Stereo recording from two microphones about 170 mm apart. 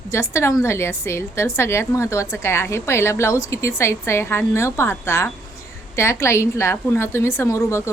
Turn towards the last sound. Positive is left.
turn(degrees=15)  # may be behind; listen again after turning